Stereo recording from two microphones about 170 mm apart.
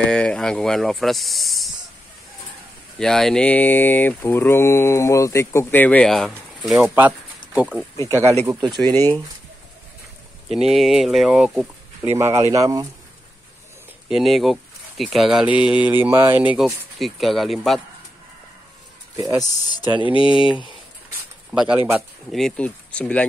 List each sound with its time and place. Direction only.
0.1 s speech: 5° left (ahead or behind)
3.0 s speech: 5° left (ahead or behind)
8.5 s speech: 20° right (ahead or behind)
8.9 s speech: 15° left (ahead or behind)
10.5 s speech: centre (ahead or behind)
12.2 s speech: 20° right (ahead or behind)
14.0 s speech: centre (ahead or behind)
19.1 s speech: 20° right (ahead or behind)
20.0 s speech: 30° left (ahead or behind)
21.5 s speech: 5° right (ahead or behind)